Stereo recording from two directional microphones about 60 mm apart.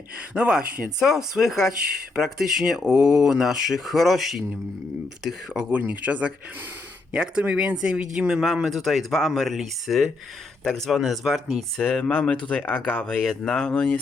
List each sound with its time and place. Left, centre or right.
0.3 s speech: centre
5.7 s speech: right; by 11.6 s centre
11.8 s speech: centre